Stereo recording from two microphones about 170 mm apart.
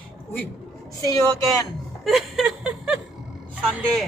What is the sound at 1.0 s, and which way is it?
Speech, 20° left (ahead or behind).